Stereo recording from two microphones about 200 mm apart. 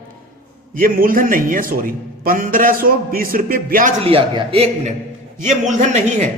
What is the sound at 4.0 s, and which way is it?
A man's voice, 25° right (ahead or behind).